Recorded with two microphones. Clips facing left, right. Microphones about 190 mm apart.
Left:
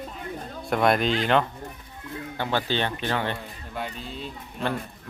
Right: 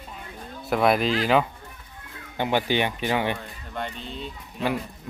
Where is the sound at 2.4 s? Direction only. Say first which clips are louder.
Right 3 dB; 15° right (ahead or behind).